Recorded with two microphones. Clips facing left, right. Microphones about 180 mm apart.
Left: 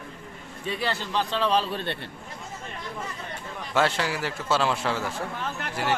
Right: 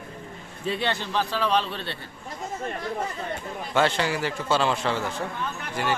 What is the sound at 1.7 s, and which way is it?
Speech, 55° left (ahead or behind).